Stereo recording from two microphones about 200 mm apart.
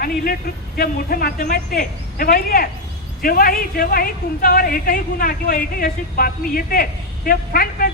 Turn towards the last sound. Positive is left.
turn(degrees=45)  # may be behind; listen again after turning